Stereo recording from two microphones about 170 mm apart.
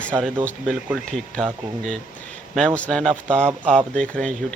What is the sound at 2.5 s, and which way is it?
Speech, 5° left (ahead or behind).